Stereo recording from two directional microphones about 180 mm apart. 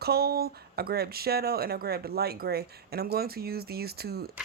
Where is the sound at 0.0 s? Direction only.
60° right (ahead or behind).